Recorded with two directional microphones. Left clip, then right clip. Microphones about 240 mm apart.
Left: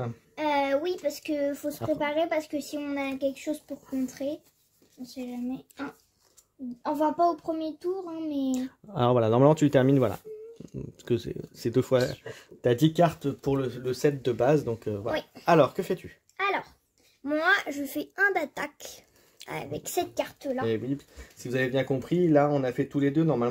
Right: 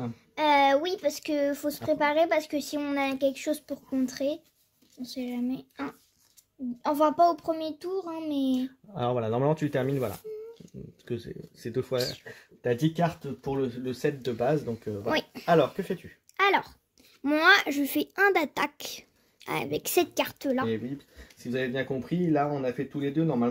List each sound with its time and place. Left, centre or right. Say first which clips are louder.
0.4 s a sound: right 4 dB; right
1.9 s speech: right 3 dB; right
8.9 s speech: left 5 dB; left
15.0 s a child's voice: right 4 dB; right
15.4 s speech: left 3 dB; left
16.3 s a sound: right 5 dB; right
17.2 s a child's voice: right 4 dB; right
21.4 s speech: left 3 dB; left